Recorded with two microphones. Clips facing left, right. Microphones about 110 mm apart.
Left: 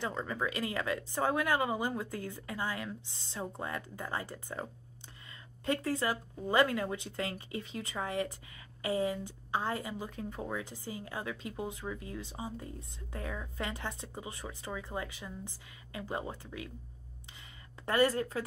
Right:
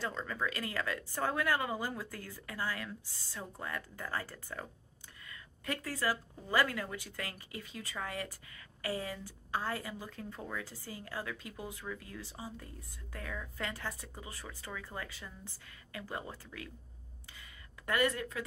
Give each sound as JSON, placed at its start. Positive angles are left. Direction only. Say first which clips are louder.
{"t": 0.0, "sound": "speech", "louder": "left 2 dB", "side_deg": 15}
{"t": 5.3, "sound": "a sound", "louder": "left 6 dB", "side_deg": 25}
{"t": 6.5, "sound": "speech", "louder": "left 4 dB", "side_deg": 25}
{"t": 17.8, "sound": "speech", "louder": "left 4 dB", "side_deg": 30}